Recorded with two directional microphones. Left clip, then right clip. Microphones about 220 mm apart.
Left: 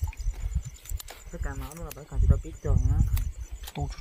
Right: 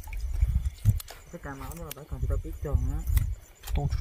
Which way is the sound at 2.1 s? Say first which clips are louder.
Left 3 dB; 50° left (ahead or behind).